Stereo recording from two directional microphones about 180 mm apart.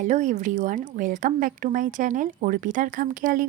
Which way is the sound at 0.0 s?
45° right (ahead or behind).